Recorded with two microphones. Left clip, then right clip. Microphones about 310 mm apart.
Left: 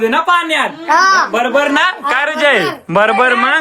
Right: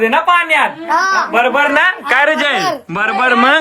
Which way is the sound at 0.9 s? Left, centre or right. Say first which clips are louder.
Left 7 dB; left.